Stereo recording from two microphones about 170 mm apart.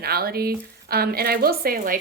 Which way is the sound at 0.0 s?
65° right (ahead or behind).